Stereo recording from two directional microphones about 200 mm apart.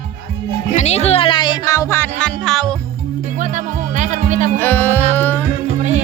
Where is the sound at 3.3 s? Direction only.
40° right (ahead or behind).